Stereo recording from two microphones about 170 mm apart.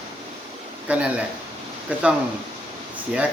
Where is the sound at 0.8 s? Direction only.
10° right (ahead or behind).